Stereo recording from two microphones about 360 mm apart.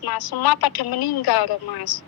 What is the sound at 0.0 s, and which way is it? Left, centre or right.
A woman's voice, left.